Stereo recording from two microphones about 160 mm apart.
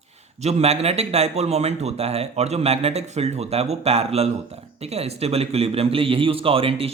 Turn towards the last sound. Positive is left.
turn(degrees=-35)  # may be behind; listen again after turning